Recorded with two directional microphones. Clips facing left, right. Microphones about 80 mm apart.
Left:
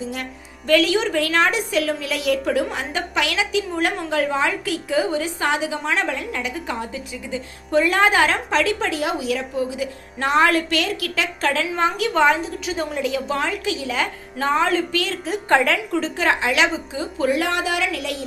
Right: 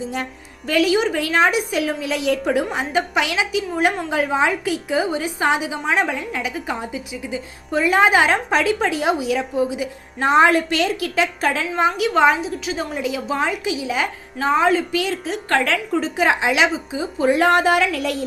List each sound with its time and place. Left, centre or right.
0.7 s a woman's voice: centre
14.3 s a woman's voice: centre
15.6 s a woman's voice: centre
16.0 s a woman's voice: centre
17.3 s speech: right